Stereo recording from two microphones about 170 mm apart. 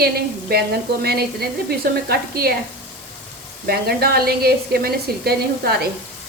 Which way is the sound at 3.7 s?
65° right (ahead or behind).